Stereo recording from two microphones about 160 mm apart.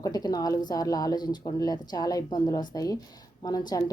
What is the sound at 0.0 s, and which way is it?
Speech, 25° left (ahead or behind).